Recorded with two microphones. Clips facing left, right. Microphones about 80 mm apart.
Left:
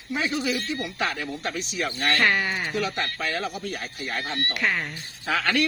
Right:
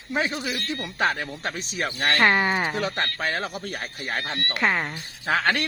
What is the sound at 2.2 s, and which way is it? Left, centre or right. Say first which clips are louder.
Speech: right 5 dB; right.